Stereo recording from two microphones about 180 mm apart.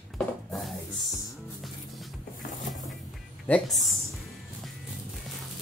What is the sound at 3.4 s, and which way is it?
Speech, 5° left (ahead or behind).